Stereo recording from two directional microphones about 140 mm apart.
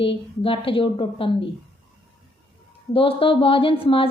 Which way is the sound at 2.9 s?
40° left (ahead or behind).